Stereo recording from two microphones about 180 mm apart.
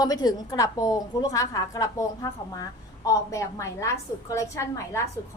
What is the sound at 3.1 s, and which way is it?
A woman's voice, 15° left (ahead or behind).